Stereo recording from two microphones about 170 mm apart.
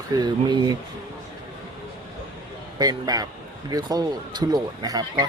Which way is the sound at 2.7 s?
25° right (ahead or behind).